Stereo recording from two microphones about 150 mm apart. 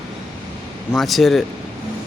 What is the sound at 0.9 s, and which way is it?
Speech, centre (ahead or behind).